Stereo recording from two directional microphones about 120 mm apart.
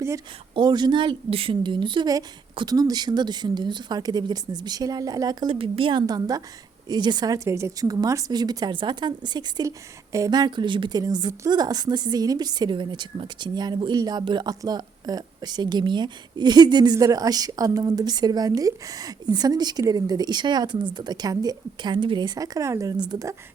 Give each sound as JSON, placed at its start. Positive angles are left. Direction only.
{"t": 0.5, "sound": "a woman's voice", "side_deg": -40}
{"t": 5.5, "sound": "a woman's voice", "side_deg": -50}